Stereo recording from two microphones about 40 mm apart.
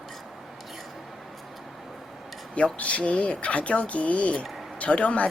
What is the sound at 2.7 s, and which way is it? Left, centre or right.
Speech, left.